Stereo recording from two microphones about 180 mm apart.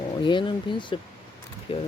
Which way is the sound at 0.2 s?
25° left (ahead or behind).